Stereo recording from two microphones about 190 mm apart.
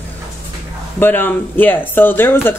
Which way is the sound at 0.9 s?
10° left (ahead or behind).